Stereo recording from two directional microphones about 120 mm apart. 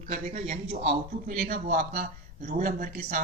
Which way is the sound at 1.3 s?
90° right.